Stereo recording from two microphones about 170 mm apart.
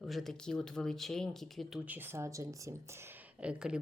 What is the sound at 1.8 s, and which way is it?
Speech, 10° right (ahead or behind).